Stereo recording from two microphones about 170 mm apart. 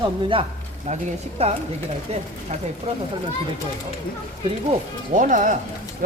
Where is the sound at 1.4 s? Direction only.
35° right (ahead or behind).